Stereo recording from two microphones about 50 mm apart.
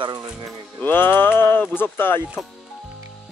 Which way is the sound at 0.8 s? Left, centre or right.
Left.